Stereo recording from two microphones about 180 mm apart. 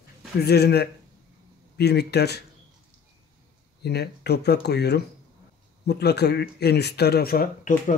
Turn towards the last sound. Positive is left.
turn(degrees=55)  # may be behind; listen again after turning